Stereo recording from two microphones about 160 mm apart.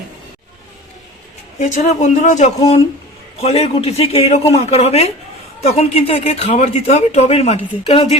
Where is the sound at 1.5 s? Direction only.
45° left (ahead or behind).